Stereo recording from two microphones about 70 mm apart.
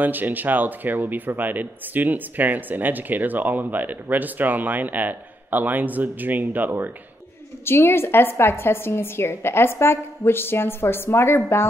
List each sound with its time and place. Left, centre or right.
0.0 s speech: right
7.6 s a woman's voice: left